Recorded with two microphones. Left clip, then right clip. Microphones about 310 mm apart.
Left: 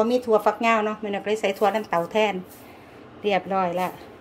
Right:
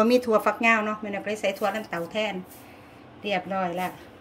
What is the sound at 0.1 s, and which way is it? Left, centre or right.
A woman's voice, centre.